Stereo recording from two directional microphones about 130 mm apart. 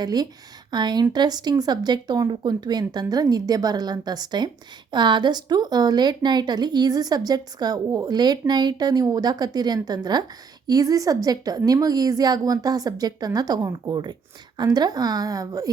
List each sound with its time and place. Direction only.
0.0 s a woman's voice: 30° right (ahead or behind)